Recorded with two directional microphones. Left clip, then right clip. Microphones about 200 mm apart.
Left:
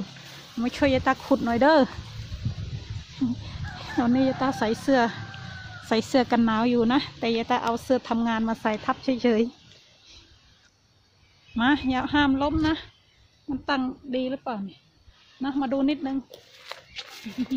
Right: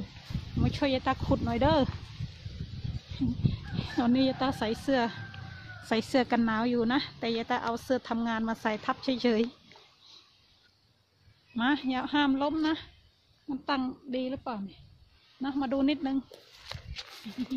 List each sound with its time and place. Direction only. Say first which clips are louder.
0.7 s a woman's voice: left 7 dB; 5° left (ahead or behind)
3.7 s a woman's voice: left 4 dB; 10° right (ahead or behind)
11.5 s a woman's voice: left 6 dB; centre (ahead or behind)
15.8 s speech: left 3 dB; 25° right (ahead or behind)
16.6 s a sound: left 4 dB; 20° right (ahead or behind)